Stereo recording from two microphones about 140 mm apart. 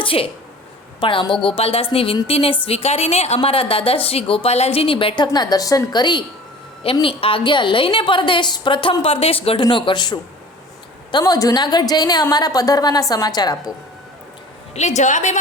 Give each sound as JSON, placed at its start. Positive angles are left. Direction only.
{"t": 0.0, "sound": "a woman's voice", "side_deg": 40}
{"t": 14.8, "sound": "a woman's voice", "side_deg": 60}